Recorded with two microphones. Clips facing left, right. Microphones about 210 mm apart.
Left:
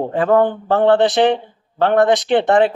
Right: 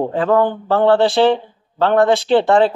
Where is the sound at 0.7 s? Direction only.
20° left (ahead or behind).